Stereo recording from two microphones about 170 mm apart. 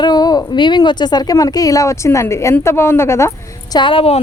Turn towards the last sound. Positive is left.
turn(degrees=35)  # may be behind; listen again after turning